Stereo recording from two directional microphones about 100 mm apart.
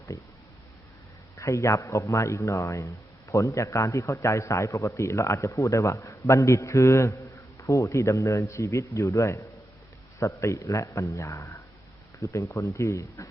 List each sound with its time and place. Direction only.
0.1 s a man's voice: 30° left (ahead or behind)
1.4 s a man's voice: 30° left (ahead or behind)